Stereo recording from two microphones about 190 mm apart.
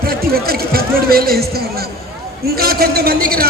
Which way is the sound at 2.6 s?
55° right (ahead or behind).